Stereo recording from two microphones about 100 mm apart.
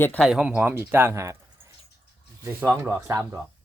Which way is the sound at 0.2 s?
5° right (ahead or behind).